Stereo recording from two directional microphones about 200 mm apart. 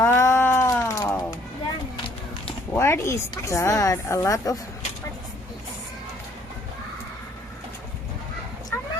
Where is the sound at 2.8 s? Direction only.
15° left (ahead or behind).